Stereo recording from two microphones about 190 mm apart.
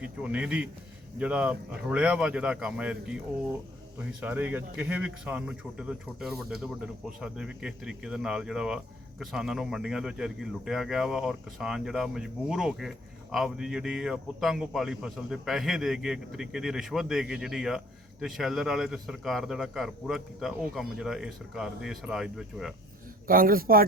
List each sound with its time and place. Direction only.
0.0 s speech: 5° right (ahead or behind)
4.2 s speech: 10° right (ahead or behind)
23.2 s a man's voice: 50° right (ahead or behind)